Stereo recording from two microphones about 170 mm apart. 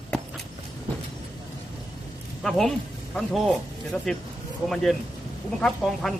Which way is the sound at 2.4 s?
Centre (ahead or behind).